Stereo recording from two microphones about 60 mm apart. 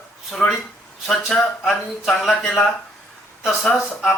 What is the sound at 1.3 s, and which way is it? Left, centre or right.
Speech, centre.